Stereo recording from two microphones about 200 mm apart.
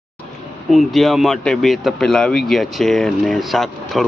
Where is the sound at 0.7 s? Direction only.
Centre (ahead or behind).